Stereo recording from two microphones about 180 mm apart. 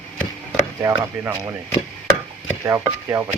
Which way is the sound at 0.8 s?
15° right (ahead or behind).